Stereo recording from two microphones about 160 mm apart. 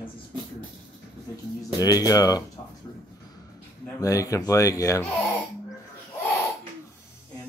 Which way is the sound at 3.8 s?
20° left (ahead or behind).